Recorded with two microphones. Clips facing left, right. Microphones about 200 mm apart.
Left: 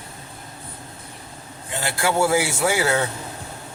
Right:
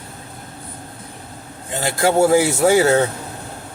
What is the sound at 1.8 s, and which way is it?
Speech, 40° right (ahead or behind).